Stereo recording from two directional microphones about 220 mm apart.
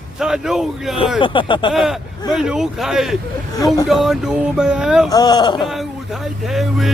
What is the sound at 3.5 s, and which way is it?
Speech, 15° left (ahead or behind).